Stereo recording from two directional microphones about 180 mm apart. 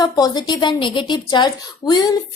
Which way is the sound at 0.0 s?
25° left (ahead or behind).